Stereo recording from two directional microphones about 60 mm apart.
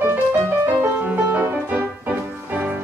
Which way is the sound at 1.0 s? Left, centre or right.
Right.